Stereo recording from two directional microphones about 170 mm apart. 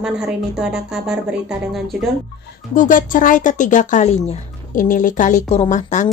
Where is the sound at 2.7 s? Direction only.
50° left (ahead or behind).